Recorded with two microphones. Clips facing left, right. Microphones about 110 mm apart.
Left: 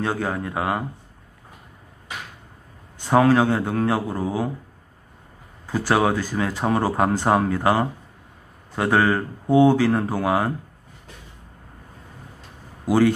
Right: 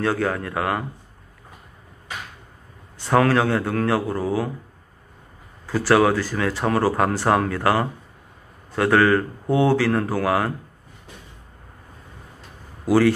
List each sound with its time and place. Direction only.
0.0 s speech: 20° left (ahead or behind)
3.1 s speech: 20° left (ahead or behind)
5.7 s speech: 20° left (ahead or behind)
12.8 s speech: 20° left (ahead or behind)